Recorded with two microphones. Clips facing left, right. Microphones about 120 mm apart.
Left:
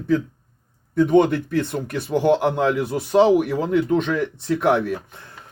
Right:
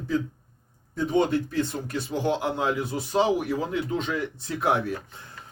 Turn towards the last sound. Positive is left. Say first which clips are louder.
# left 6 dB
turn(degrees=65)  # may be behind; listen again after turning